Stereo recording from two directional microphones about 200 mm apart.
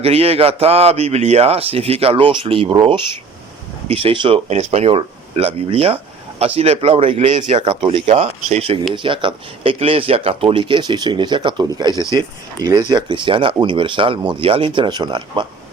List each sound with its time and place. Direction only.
0.0 s speech: 30° right (ahead or behind)
12.0 s speech: 15° left (ahead or behind)
12.6 s speech: 20° right (ahead or behind)